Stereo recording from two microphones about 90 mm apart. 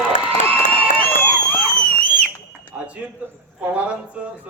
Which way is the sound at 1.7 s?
15° left (ahead or behind).